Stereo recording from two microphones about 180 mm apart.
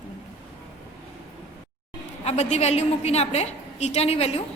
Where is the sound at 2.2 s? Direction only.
35° left (ahead or behind).